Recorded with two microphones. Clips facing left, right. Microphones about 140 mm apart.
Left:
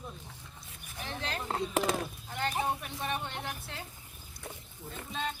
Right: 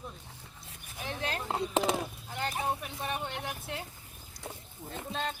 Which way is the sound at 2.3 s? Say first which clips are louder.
Left 1 dB; 5° right (ahead or behind).